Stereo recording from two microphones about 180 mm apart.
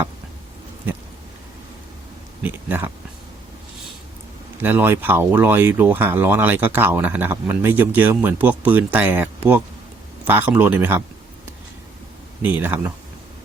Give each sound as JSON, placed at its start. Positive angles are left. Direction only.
{"t": 2.4, "sound": "speech", "side_deg": -10}
{"t": 4.6, "sound": "speech", "side_deg": -10}
{"t": 12.4, "sound": "speech", "side_deg": -10}